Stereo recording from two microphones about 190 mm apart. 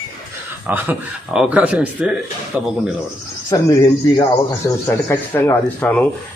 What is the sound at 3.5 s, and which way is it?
A man's voice, 15° left (ahead or behind).